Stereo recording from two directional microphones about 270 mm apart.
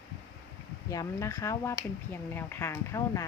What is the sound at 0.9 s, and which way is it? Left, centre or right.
Speech, centre.